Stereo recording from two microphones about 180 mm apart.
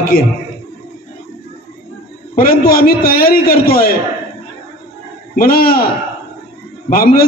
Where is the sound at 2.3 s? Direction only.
55° left (ahead or behind).